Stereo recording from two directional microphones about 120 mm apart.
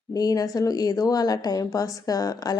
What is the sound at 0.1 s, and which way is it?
A woman's voice, 30° left (ahead or behind).